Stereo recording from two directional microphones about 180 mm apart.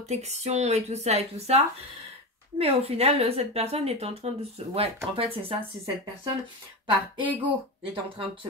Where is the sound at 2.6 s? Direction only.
35° right (ahead or behind).